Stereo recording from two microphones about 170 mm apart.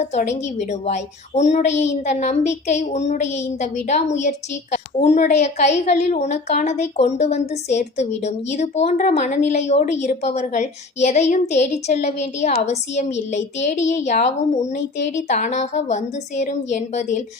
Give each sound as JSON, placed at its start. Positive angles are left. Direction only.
{"t": 0.0, "sound": "a woman's voice", "side_deg": 45}